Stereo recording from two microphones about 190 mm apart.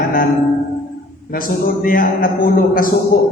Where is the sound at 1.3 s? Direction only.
50° left (ahead or behind).